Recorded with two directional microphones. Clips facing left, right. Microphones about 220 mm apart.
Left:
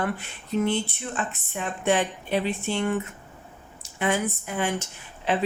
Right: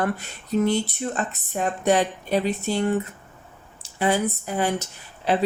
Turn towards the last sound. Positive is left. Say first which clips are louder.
# right 3 dB
turn(degrees=-35)  # may be behind; listen again after turning